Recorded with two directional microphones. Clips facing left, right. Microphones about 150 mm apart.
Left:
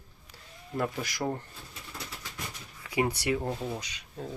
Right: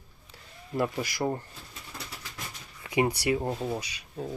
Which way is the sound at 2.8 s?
20° right (ahead or behind).